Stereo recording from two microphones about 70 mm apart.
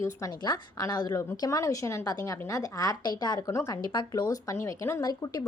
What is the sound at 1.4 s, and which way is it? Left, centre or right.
A woman's voice, left.